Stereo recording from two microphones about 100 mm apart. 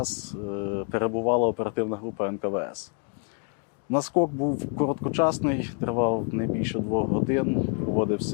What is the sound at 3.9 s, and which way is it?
Speech, 25° left (ahead or behind).